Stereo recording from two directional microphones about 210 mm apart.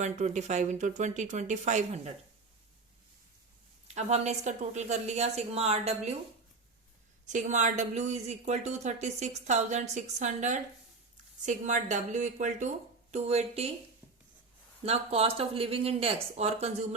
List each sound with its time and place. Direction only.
0.0 s speech: 35° right (ahead or behind)
3.8 s speech: 30° right (ahead or behind)
7.3 s speech: 35° right (ahead or behind)
14.8 s speech: 30° right (ahead or behind)